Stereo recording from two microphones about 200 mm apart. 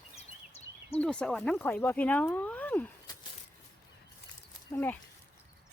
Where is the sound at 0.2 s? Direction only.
30° left (ahead or behind).